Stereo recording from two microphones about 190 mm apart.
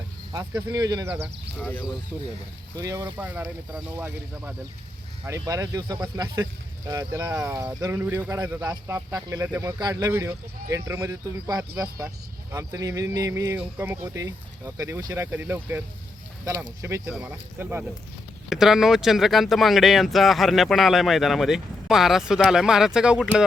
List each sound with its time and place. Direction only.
0.3 s speech: 20° right (ahead or behind)
1.1 s speech: 5° right (ahead or behind)
2.7 s speech: 20° right (ahead or behind)
7.4 s speech: 20° right (ahead or behind)
17.1 s speech: 10° right (ahead or behind)